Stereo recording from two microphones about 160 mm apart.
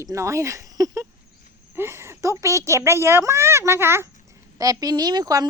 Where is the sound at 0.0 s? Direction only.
20° right (ahead or behind).